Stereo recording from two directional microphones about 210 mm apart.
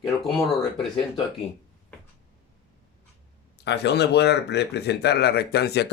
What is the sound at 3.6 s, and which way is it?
Speech, 55° left (ahead or behind).